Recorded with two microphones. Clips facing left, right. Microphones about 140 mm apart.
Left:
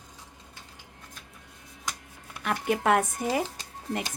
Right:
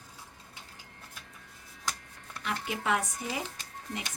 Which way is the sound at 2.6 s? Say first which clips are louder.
Left 8 dB; 55° left (ahead or behind).